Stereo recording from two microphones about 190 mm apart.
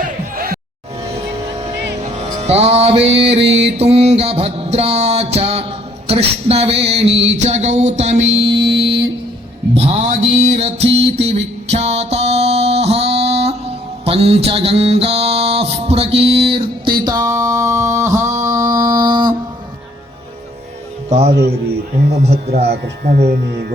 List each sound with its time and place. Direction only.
0.0 s music: 50° right (ahead or behind)
2.4 s music: 35° right (ahead or behind)
8.3 s a sound: 60° right (ahead or behind)
9.7 s music: 35° right (ahead or behind)
17.0 s a sound: 20° right (ahead or behind)
21.1 s a man's voice: 35° right (ahead or behind)
21.3 s speech: 60° right (ahead or behind)
22.1 s music: 35° right (ahead or behind)
22.4 s speech: 60° right (ahead or behind)